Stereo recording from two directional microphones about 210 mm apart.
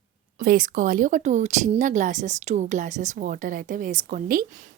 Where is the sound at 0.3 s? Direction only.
40° right (ahead or behind).